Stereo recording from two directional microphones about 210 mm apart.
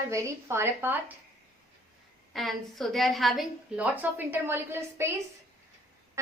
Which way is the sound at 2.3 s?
Centre (ahead or behind).